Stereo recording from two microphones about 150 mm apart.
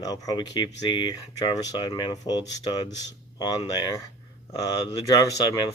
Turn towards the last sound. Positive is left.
turn(degrees=25)  # may be behind; listen again after turning